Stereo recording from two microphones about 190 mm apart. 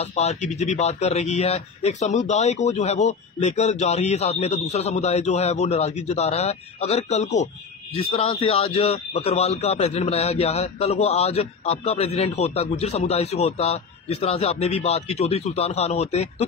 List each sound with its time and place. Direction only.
0.0 s a man's voice: 35° left (ahead or behind)